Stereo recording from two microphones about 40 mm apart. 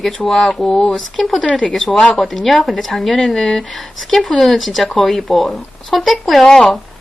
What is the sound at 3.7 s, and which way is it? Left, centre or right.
Speech, centre.